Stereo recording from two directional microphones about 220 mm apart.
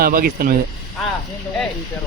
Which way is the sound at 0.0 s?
40° right (ahead or behind).